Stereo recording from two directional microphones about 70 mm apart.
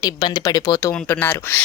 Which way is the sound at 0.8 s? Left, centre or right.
Left.